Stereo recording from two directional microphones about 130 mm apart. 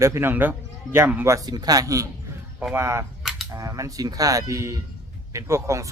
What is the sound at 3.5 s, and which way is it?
A man's voice, 25° right (ahead or behind).